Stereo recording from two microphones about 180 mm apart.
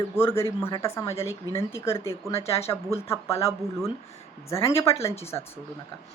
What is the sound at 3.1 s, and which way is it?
Speech, 15° left (ahead or behind).